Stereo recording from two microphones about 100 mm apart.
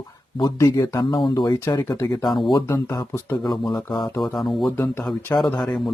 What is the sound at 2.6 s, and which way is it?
Speech, 25° left (ahead or behind).